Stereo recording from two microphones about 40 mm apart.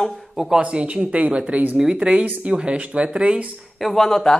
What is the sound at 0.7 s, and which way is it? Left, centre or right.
Speech, right.